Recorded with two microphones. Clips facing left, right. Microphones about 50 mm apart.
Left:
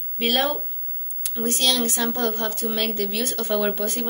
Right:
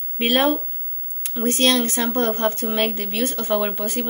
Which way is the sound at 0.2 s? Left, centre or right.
Right.